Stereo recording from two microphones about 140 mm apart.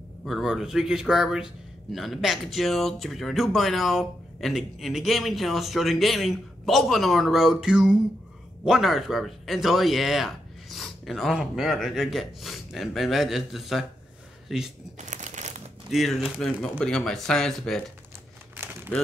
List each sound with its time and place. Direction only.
0.2 s speech: centre (ahead or behind)
15.0 s a sound: 60° right (ahead or behind)
15.9 s speech: centre (ahead or behind)